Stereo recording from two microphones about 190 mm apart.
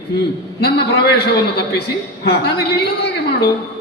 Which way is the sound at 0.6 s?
60° left (ahead or behind).